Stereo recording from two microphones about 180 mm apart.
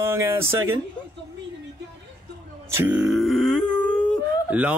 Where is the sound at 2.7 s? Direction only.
10° right (ahead or behind).